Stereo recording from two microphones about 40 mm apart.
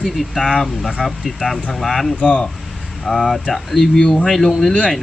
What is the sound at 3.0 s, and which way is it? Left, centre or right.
Speech, centre.